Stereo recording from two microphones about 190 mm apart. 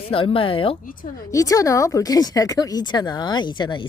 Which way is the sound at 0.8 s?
50° left (ahead or behind).